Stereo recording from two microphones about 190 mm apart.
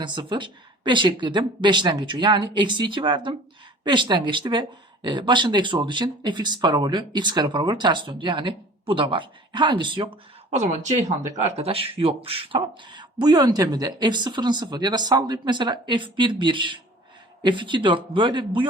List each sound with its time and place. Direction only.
0.0 s speech: 25° right (ahead or behind)
10.5 s speech: 35° right (ahead or behind)